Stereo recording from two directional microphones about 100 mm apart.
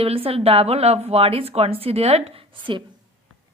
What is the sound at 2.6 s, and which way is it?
Speech, 55° right (ahead or behind).